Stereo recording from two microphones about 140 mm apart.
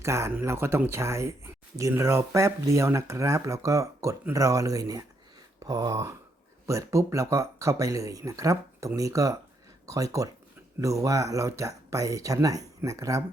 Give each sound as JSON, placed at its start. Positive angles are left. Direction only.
{"t": 0.0, "sound": "speech", "side_deg": -20}
{"t": 5.5, "sound": "a sound", "side_deg": -30}
{"t": 6.7, "sound": "speech", "side_deg": -20}